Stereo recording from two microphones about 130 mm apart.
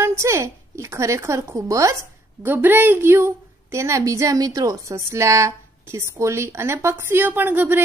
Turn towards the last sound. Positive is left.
turn(degrees=-15)  # may be behind; listen again after turning